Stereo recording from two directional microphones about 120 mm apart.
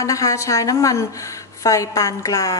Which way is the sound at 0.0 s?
25° left (ahead or behind).